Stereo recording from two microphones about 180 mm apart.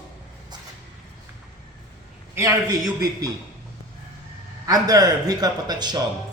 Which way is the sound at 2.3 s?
15° right (ahead or behind).